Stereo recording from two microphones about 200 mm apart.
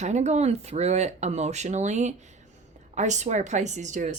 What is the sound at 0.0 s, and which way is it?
Speech, 35° right (ahead or behind).